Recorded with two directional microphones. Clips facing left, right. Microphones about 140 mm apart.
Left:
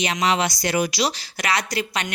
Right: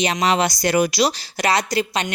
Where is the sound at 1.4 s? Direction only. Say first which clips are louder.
Right 5 dB; 30° right (ahead or behind).